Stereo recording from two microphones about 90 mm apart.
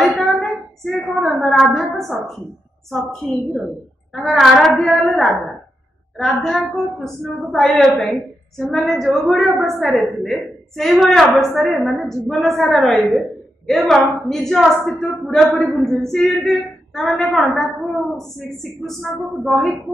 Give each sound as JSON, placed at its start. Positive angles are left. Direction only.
{"t": 0.2, "sound": "a woman's voice", "side_deg": 0}
{"t": 6.4, "sound": "a woman's voice", "side_deg": 0}
{"t": 18.9, "sound": "a woman's voice", "side_deg": 0}